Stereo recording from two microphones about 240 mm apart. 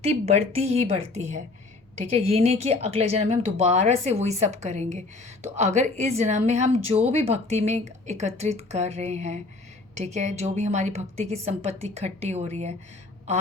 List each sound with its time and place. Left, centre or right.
0.5 s speech: right